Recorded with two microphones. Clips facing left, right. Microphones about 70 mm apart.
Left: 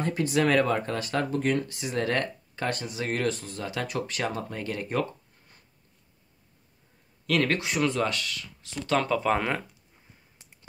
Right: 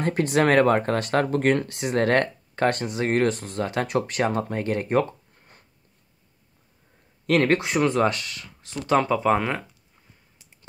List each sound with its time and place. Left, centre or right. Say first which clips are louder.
0.0 s speech: right 4 dB; right
7.2 s speech: right 5 dB; right
8.9 s speech: right 4 dB; centre